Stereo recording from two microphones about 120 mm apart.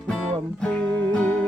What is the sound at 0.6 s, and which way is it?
Music, 10° left (ahead or behind).